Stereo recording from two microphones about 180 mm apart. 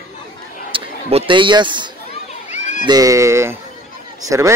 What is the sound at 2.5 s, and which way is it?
Children playing, 40° left (ahead or behind).